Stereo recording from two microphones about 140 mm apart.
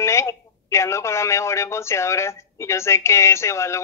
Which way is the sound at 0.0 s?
20° left (ahead or behind).